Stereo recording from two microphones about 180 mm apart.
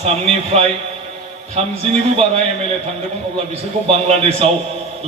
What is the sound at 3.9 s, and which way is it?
Speech, 35° right (ahead or behind).